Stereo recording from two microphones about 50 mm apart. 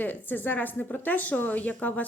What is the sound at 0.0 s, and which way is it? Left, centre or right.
Speech, left.